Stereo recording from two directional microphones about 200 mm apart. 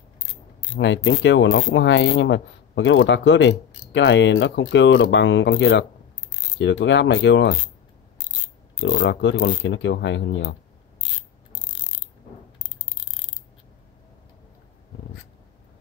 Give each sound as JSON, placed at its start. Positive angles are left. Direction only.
{"t": 0.7, "sound": "speech", "side_deg": 65}
{"t": 8.8, "sound": "speech", "side_deg": 60}